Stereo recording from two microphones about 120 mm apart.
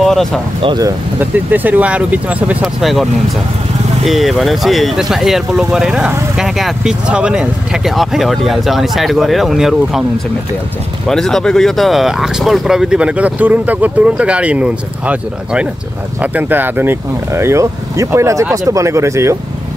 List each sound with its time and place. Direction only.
0.0 s speech: 5° left (ahead or behind)
1.3 s speech: 15° right (ahead or behind)
2.6 s speech: centre (ahead or behind)
11.1 s speech: 5° left (ahead or behind); by 19.3 s 25° right (ahead or behind)